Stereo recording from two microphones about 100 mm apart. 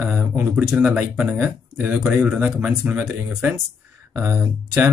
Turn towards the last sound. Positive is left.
turn(degrees=-30)  # may be behind; listen again after turning